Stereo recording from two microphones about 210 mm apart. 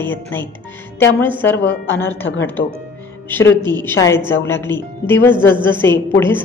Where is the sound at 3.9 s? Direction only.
10° left (ahead or behind).